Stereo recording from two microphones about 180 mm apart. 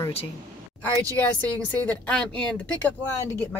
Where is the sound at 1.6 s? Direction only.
10° left (ahead or behind).